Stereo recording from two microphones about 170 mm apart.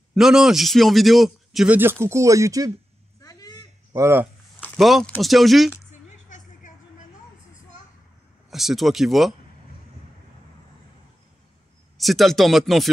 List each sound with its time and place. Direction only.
0.1 s a man's voice: 5° right (ahead or behind)
1.8 s speech: 15° right (ahead or behind)
3.2 s a sound: 20° left (ahead or behind)
3.9 s speech: 15° right (ahead or behind)
4.7 s a man's voice: centre (ahead or behind)
6.2 s vehicle: 50° left (ahead or behind)
8.5 s a man's voice: centre (ahead or behind)
12.0 s a man's voice: centre (ahead or behind)